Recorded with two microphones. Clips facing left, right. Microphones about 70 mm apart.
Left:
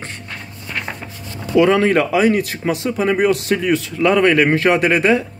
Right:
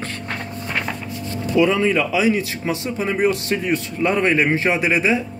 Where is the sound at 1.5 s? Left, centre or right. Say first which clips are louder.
Left 4 dB; left.